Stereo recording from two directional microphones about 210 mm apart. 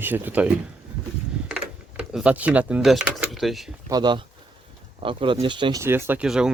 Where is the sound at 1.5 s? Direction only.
5° right (ahead or behind).